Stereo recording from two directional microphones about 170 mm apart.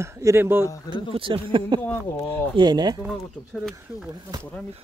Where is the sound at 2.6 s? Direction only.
25° right (ahead or behind).